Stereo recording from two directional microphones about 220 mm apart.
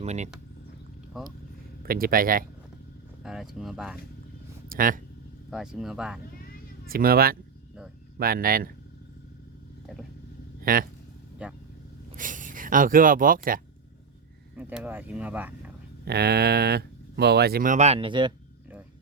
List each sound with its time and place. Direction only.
0.0 s speech: 30° right (ahead or behind)
1.2 s speech: centre (ahead or behind)
1.8 s speech: 40° right (ahead or behind)
3.2 s speech: centre (ahead or behind)
4.7 s speech: 40° right (ahead or behind)
5.5 s speech: 5° right (ahead or behind)
6.8 s speech: 40° right (ahead or behind)
9.8 s vehicle: centre (ahead or behind)
10.6 s speech: 40° right (ahead or behind)
12.1 s speech: 35° right (ahead or behind)
14.5 s speech: 5° right (ahead or behind)
16.0 s speech: 45° right (ahead or behind); by 18.3 s 20° right (ahead or behind)